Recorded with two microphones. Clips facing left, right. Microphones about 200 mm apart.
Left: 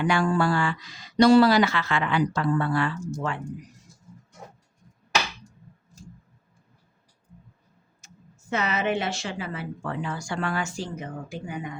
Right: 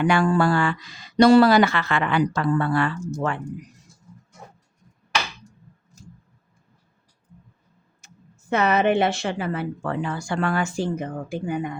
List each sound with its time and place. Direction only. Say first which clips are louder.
0.0 s a woman's voice: right 4 dB; 60° right (ahead or behind)
8.0 s a woman's voice: right 1 dB; 60° right (ahead or behind)